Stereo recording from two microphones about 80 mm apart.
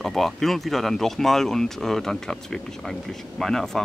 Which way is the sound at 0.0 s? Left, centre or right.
Centre.